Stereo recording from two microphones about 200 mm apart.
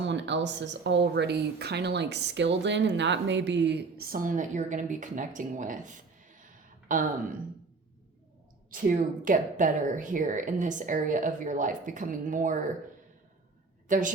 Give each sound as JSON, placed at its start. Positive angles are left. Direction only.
{"t": 0.0, "sound": "speech", "side_deg": -65}
{"t": 8.7, "sound": "a woman's voice", "side_deg": -45}
{"t": 13.8, "sound": "a woman's voice", "side_deg": -40}